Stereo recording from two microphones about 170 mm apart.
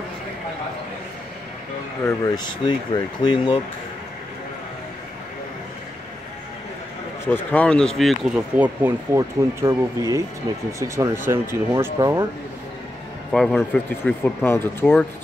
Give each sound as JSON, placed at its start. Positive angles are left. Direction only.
{"t": 2.2, "sound": "speech", "side_deg": 25}
{"t": 7.2, "sound": "speech", "side_deg": 10}
{"t": 13.3, "sound": "speech", "side_deg": 5}